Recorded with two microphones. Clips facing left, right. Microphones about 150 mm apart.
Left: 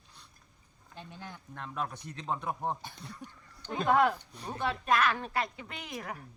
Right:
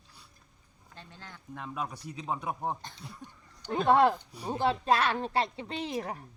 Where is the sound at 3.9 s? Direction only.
25° right (ahead or behind).